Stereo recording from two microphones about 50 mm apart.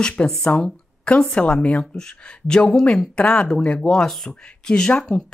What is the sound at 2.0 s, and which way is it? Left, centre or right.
Speech, centre.